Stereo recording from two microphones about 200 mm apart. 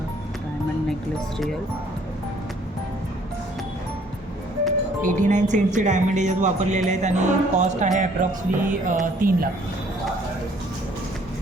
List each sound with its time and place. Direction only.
5.0 s speech: 40° right (ahead or behind)